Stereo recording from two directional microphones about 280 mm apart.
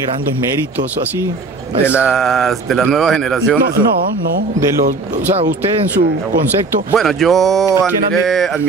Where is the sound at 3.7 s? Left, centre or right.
Right.